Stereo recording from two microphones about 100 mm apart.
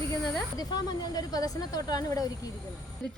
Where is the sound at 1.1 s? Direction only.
40° left (ahead or behind).